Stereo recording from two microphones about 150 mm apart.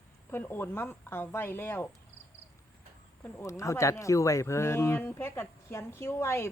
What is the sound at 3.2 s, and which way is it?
Speech, 20° left (ahead or behind).